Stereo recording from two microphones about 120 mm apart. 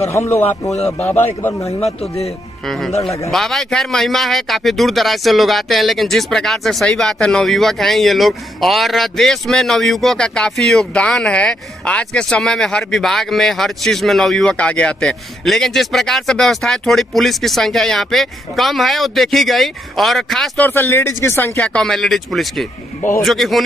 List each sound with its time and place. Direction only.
0.0 s speech: 25° left (ahead or behind)
3.3 s speech: 5° left (ahead or behind)
20.5 s speech: 15° left (ahead or behind); by 23.6 s centre (ahead or behind)